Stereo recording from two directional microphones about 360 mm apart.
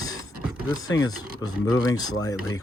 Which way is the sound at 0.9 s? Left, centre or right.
Centre.